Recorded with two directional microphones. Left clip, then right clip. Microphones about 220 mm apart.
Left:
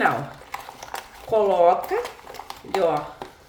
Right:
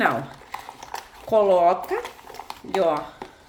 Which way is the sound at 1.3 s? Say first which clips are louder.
Even; 40° right (ahead or behind).